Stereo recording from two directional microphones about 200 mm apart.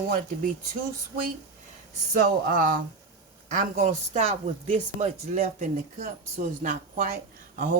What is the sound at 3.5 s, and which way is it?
Speech, 40° right (ahead or behind).